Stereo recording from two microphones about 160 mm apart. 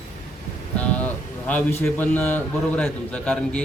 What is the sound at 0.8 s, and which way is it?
A man's voice, 10° left (ahead or behind).